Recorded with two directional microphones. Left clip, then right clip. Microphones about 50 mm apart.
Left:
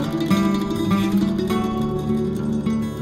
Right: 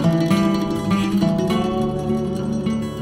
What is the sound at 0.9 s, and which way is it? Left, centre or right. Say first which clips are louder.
Music: right 2 dB; right.